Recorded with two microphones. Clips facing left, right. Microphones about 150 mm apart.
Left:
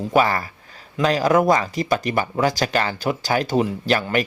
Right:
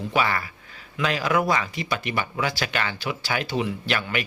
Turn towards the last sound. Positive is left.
turn(degrees=40)  # may be behind; listen again after turning